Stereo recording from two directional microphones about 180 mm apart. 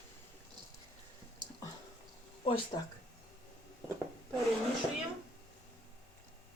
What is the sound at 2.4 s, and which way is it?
Speech, 30° left (ahead or behind).